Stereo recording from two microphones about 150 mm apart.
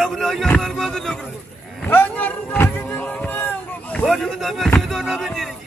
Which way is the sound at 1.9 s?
10° left (ahead or behind).